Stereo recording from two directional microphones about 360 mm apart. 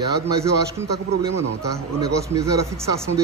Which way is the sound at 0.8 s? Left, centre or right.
Centre.